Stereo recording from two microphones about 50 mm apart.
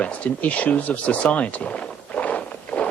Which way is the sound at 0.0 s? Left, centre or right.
Left.